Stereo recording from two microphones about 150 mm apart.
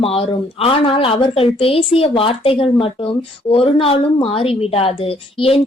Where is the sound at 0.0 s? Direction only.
40° left (ahead or behind).